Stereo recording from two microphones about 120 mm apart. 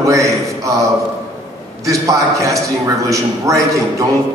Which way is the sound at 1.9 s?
25° right (ahead or behind).